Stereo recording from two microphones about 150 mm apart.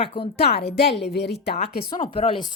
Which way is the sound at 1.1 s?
90° left.